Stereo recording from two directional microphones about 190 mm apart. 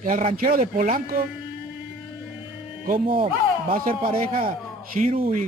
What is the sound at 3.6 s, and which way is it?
Speech, 45° right (ahead or behind).